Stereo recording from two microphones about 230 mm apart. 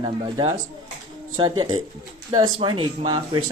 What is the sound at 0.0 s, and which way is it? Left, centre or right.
Speech, right.